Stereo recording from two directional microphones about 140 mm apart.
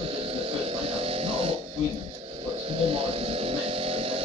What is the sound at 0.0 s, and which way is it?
Music, 45° right (ahead or behind).